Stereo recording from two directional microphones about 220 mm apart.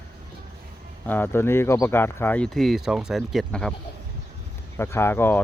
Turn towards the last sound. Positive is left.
turn(degrees=10)  # may be behind; listen again after turning